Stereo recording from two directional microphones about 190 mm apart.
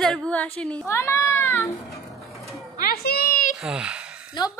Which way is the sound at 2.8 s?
55° left (ahead or behind).